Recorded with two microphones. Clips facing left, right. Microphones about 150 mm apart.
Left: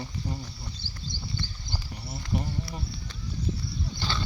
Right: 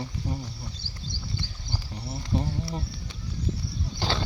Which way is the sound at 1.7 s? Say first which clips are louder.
Right 2 dB; 20° right (ahead or behind).